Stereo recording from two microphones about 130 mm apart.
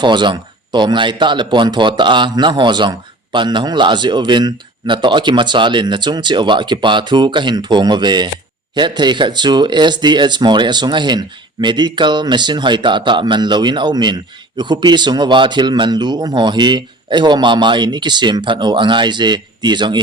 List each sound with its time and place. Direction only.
0.0 s speech: 35° right (ahead or behind)